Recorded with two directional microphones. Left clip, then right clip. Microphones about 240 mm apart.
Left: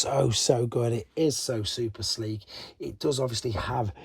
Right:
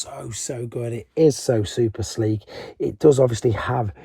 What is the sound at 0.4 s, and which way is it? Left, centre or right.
Speech, centre.